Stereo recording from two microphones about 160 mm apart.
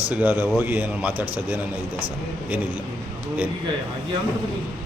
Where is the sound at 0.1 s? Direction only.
10° right (ahead or behind).